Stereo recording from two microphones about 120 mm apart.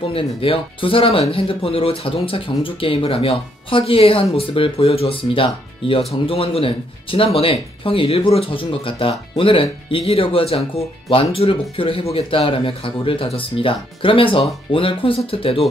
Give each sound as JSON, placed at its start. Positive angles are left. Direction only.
{"t": 0.1, "sound": "speech", "side_deg": 50}